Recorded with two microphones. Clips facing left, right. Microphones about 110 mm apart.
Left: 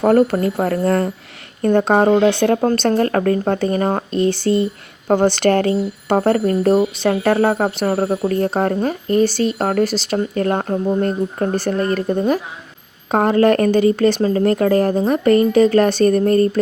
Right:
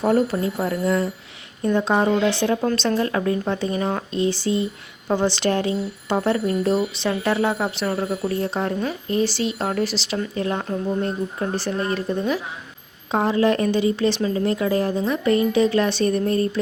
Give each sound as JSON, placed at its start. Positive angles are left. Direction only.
{"t": 0.0, "sound": "speech", "side_deg": 60}